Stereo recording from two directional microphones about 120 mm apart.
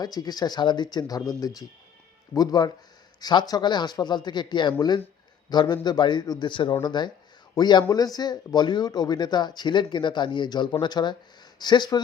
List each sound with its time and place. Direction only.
0.0 s speech: 35° left (ahead or behind)